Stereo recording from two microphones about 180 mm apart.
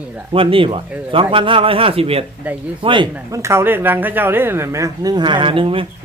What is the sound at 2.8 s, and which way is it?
Speech, 25° right (ahead or behind).